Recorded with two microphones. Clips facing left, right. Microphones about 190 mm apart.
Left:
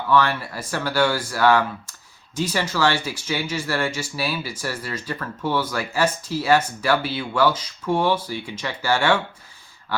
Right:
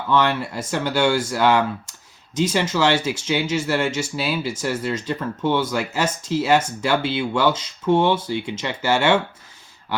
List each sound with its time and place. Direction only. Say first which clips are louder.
0.1 s speech: right 1 dB; 20° right (ahead or behind)